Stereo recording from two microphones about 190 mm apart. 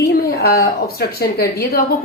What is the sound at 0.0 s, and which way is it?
A woman's voice, 55° left (ahead or behind).